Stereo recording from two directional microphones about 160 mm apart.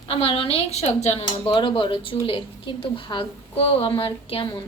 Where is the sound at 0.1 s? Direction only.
35° left (ahead or behind).